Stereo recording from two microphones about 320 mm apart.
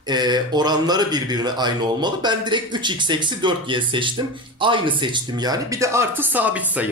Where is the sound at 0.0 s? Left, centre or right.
Centre.